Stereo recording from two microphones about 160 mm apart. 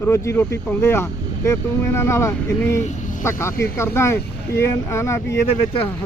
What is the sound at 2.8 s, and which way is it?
Vehicle, 50° left (ahead or behind).